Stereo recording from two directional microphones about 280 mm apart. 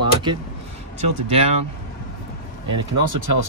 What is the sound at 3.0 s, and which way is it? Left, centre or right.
Speech, right.